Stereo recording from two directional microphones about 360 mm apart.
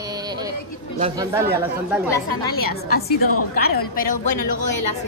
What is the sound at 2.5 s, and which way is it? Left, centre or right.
A woman's voice, left.